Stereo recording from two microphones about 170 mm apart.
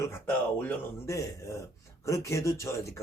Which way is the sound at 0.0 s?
15° left (ahead or behind).